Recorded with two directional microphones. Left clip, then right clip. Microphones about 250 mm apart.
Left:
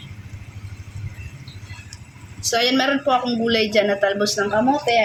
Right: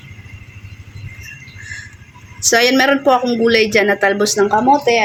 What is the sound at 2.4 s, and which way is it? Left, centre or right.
Speech, right.